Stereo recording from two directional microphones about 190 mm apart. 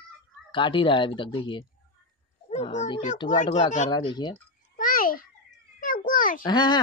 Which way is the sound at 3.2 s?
25° left (ahead or behind).